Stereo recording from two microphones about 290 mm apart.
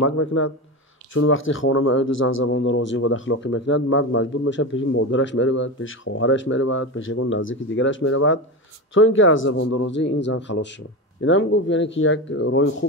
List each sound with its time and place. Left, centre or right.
0.0 s speech: left